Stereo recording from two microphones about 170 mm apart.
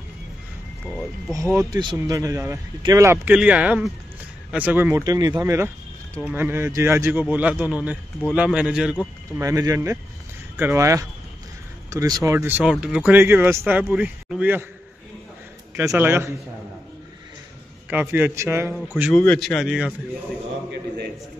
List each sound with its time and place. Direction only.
0.8 s speech: centre (ahead or behind)
1.3 s speech: 20° right (ahead or behind)
9.4 s speech: 20° right (ahead or behind)
16.0 s speech: 15° right (ahead or behind)
17.8 s speech: 10° right (ahead or behind)
19.1 s speech: 10° left (ahead or behind)